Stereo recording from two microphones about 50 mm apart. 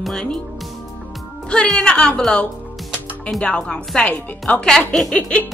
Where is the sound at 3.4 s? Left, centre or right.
Left.